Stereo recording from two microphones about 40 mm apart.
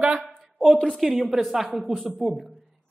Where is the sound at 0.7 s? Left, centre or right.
Left.